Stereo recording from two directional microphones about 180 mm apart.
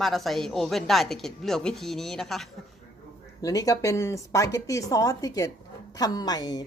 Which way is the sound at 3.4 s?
20° left (ahead or behind).